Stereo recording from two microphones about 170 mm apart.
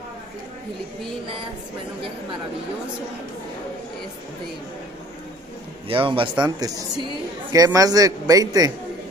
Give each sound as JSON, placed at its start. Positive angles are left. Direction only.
{"t": 5.9, "sound": "a man's voice", "side_deg": -30}